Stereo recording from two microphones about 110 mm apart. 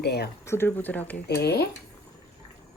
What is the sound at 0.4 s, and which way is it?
Speech, 20° left (ahead or behind).